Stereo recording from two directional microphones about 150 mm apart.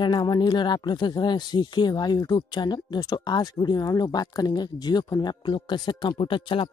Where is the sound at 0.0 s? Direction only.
30° left (ahead or behind).